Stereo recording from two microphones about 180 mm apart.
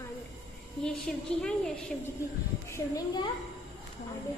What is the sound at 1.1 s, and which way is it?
Speech, 5° left (ahead or behind).